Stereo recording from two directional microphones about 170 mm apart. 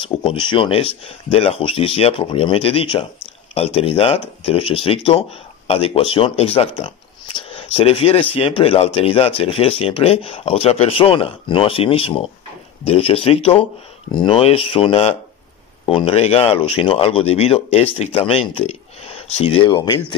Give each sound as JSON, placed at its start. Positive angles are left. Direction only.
{"t": 0.0, "sound": "speech", "side_deg": 30}